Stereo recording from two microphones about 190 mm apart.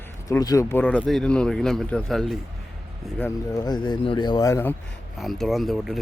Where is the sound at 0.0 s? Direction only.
15° left (ahead or behind).